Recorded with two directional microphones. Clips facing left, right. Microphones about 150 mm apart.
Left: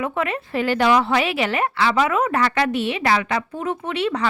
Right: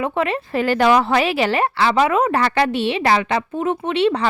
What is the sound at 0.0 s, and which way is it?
Speech, 30° right (ahead or behind).